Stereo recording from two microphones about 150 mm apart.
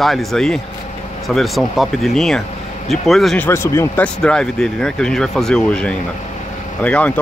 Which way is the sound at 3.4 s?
15° left (ahead or behind).